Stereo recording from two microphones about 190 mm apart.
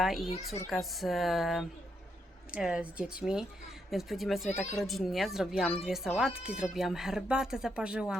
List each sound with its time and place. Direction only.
0.0 s speech: centre (ahead or behind)
0.3 s a child's voice: 35° left (ahead or behind)
0.7 s speech: centre (ahead or behind)
4.4 s a child's voice: 35° left (ahead or behind)
4.8 s speech: centre (ahead or behind)